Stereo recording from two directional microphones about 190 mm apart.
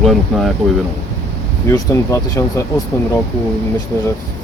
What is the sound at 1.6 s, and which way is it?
Speech, 15° left (ahead or behind).